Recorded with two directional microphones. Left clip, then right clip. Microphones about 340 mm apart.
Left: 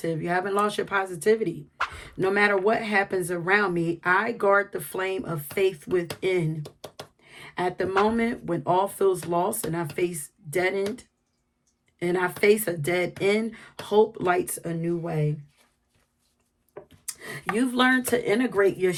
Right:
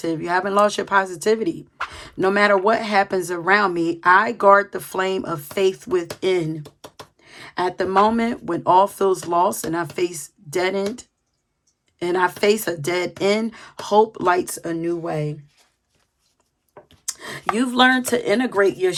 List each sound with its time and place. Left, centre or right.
0.0 s speech: centre
7.3 s a sound: centre
8.0 s speech: centre
17.1 s speech: centre